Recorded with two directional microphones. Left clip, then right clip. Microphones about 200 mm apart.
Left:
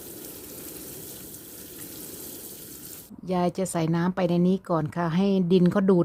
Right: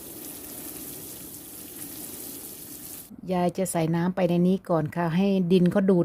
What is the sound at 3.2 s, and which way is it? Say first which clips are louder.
A woman's voice: even; centre (ahead or behind).